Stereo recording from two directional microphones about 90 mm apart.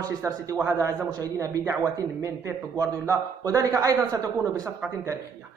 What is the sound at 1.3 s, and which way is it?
A man's voice, 35° right (ahead or behind).